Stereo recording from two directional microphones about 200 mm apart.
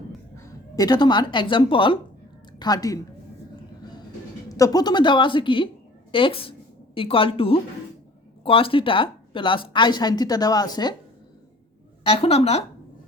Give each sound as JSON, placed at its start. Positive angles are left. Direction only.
{"t": 0.3, "sound": "a woman's voice", "side_deg": 20}
{"t": 4.4, "sound": "a woman's voice", "side_deg": 15}
{"t": 12.0, "sound": "speech", "side_deg": 30}